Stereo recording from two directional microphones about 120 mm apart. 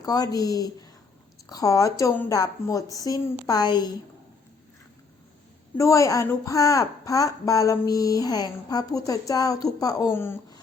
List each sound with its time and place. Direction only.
0.0 s a woman's voice: 30° left (ahead or behind)
5.7 s speech: 25° left (ahead or behind)